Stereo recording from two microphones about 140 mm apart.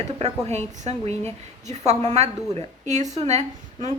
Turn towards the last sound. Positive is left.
turn(degrees=-50)  # may be behind; listen again after turning